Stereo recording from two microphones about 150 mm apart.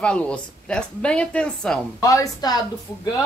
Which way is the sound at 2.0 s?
25° left (ahead or behind).